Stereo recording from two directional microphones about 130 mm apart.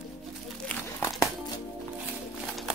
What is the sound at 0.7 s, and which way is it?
Crumpling, 20° left (ahead or behind).